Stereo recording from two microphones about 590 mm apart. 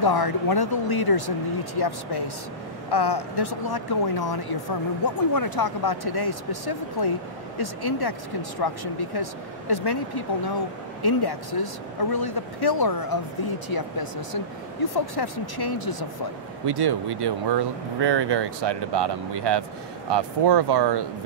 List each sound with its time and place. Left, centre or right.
0.0 s speech: left
16.6 s speech: right